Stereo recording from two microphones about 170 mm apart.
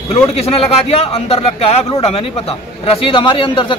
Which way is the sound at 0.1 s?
35° left (ahead or behind).